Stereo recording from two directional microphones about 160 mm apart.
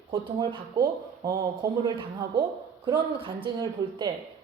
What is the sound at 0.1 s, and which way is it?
A woman's voice, 30° right (ahead or behind).